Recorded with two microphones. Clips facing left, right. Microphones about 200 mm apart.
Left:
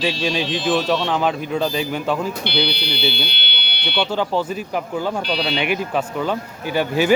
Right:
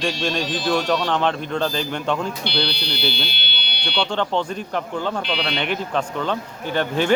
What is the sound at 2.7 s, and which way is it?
Speech, 55° left (ahead or behind).